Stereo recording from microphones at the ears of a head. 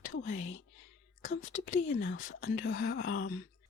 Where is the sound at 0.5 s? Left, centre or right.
Left.